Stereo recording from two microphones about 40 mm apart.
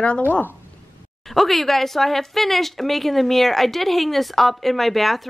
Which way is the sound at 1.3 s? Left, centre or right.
Centre.